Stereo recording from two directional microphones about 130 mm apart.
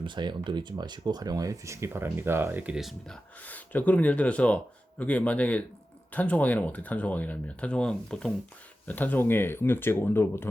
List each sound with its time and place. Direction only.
0.0 s speech: 35° right (ahead or behind); by 3.2 s 5° right (ahead or behind)
3.4 s speech: 10° left (ahead or behind)